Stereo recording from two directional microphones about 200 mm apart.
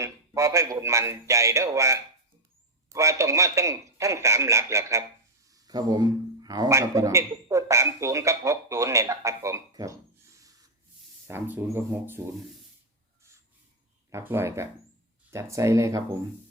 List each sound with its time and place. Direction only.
0.0 s a man's voice: 15° right (ahead or behind)
14.1 s a man's voice: 10° right (ahead or behind)